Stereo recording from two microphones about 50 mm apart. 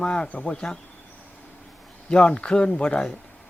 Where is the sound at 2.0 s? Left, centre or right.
Left.